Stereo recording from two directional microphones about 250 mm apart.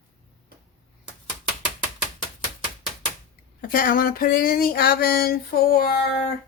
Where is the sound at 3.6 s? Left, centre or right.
Left.